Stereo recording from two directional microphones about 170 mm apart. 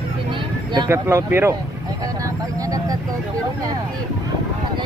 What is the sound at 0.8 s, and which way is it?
Speech, 15° right (ahead or behind).